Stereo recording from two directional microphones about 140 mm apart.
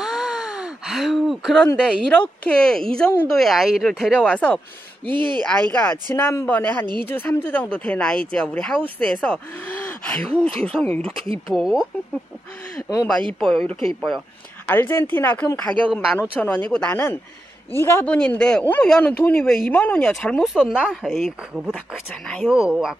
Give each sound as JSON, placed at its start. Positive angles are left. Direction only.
{"t": 0.0, "sound": "gasp", "side_deg": -5}
{"t": 1.8, "sound": "speech", "side_deg": 5}
{"t": 5.0, "sound": "speech", "side_deg": -35}
{"t": 5.7, "sound": "speech", "side_deg": 10}
{"t": 11.2, "sound": "speech", "side_deg": -40}
{"t": 11.5, "sound": "speech", "side_deg": 0}
{"t": 13.3, "sound": "speech", "side_deg": 5}
{"t": 14.7, "sound": "a man's voice", "side_deg": 15}